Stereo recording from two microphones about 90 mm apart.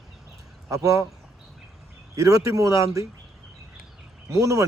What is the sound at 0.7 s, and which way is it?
Speech, 35° right (ahead or behind).